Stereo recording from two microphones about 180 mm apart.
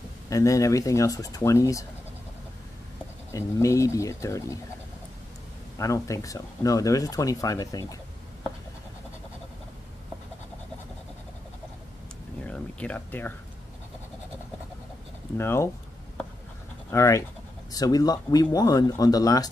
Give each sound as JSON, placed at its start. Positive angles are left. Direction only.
{"t": 0.3, "sound": "speech", "side_deg": 15}
{"t": 3.3, "sound": "speech", "side_deg": 15}
{"t": 5.8, "sound": "speech", "side_deg": 15}
{"t": 12.4, "sound": "a sound", "side_deg": 5}
{"t": 15.3, "sound": "speech", "side_deg": 15}
{"t": 16.9, "sound": "speech", "side_deg": 15}